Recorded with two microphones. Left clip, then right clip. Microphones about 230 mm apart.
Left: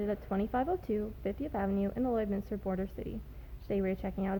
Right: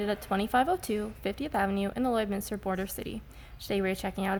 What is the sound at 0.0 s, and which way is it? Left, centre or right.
A woman's voice, centre.